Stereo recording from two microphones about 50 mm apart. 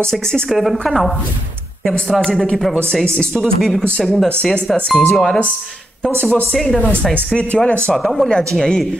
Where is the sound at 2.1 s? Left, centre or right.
Centre.